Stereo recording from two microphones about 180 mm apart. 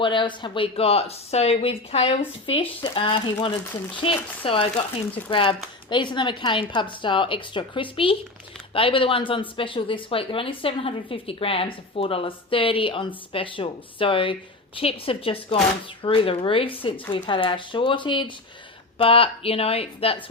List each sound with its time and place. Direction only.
0.0 s a woman's voice: 25° left (ahead or behind)